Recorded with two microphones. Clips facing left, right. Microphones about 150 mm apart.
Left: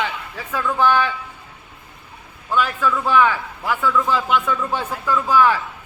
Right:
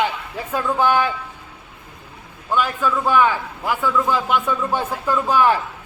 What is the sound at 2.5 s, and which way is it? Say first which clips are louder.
A man's voice: even; 15° right (ahead or behind).